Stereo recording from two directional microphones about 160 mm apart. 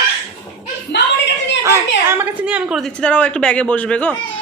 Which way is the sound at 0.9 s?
90° left.